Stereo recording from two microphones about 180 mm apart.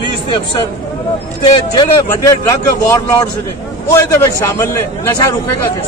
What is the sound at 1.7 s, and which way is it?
A man's voice, 20° left (ahead or behind).